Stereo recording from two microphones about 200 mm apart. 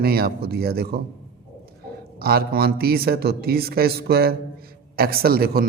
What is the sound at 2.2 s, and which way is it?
A man's voice, 50° right (ahead or behind).